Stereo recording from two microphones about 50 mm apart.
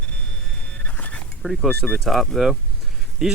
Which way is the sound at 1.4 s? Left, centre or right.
Centre.